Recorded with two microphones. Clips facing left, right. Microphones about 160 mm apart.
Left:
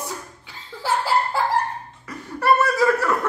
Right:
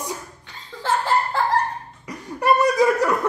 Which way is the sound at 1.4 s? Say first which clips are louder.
Even; 10° left (ahead or behind).